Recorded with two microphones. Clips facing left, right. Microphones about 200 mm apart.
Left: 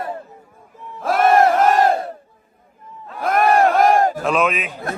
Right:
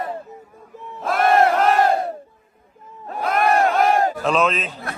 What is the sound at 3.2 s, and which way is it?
Battle cry, 50° left (ahead or behind).